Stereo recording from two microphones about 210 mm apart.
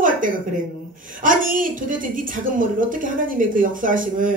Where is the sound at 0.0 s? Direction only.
40° right (ahead or behind).